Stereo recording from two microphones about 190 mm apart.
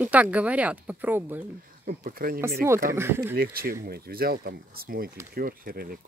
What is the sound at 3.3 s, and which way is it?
Speech, 50° right (ahead or behind).